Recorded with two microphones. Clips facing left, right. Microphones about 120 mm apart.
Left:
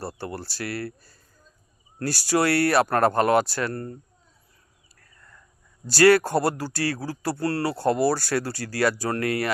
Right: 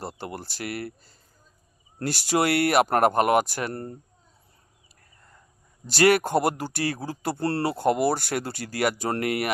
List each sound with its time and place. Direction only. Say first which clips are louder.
0.0 s speech: left 2 dB; 20° right (ahead or behind)
2.0 s speech: left 1 dB; 20° right (ahead or behind)
5.8 s speech: left 3 dB; 20° right (ahead or behind)